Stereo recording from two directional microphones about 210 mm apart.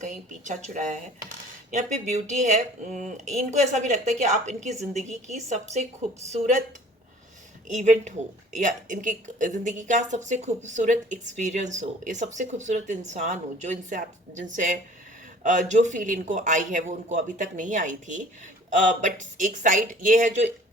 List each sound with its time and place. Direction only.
0.0 s speech: 35° right (ahead or behind)
7.7 s speech: 35° right (ahead or behind)